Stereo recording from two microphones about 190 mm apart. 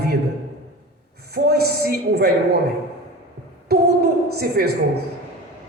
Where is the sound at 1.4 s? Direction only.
55° right (ahead or behind).